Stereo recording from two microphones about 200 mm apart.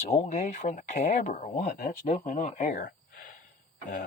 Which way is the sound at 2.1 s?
35° left (ahead or behind).